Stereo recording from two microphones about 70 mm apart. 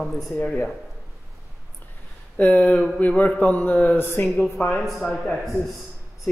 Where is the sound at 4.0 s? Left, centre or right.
Left.